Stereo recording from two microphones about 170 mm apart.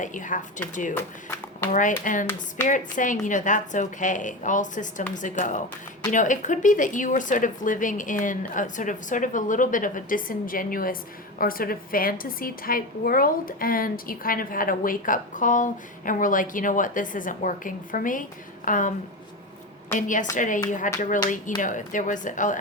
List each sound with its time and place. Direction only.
0.0 s a woman's voice: 50° left (ahead or behind)
0.9 s speech: 15° left (ahead or behind)
2.1 s a woman's voice: 50° left (ahead or behind)
20.0 s a woman's voice: 50° left (ahead or behind)